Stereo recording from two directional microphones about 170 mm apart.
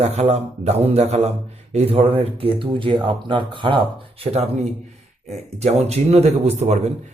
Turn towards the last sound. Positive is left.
turn(degrees=-40)  # may be behind; listen again after turning